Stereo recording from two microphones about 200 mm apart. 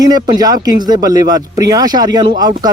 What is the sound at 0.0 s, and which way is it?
Speech, 20° right (ahead or behind).